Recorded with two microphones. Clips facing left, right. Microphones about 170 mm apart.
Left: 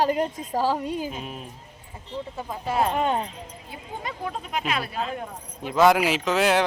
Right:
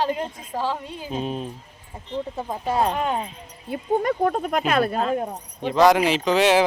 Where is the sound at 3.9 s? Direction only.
65° right (ahead or behind); by 5.3 s 40° right (ahead or behind).